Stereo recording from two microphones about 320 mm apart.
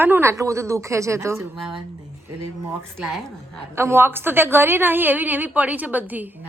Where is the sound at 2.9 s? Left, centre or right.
Centre.